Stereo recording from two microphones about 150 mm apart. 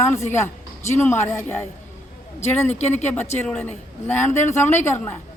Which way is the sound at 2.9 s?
15° left (ahead or behind).